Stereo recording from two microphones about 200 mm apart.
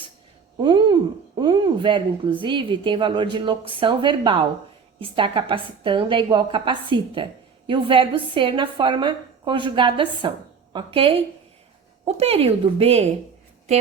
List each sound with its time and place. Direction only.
0.6 s a woman's voice: 25° right (ahead or behind)